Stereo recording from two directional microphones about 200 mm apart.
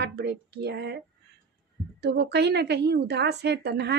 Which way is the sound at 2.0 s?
55° right (ahead or behind).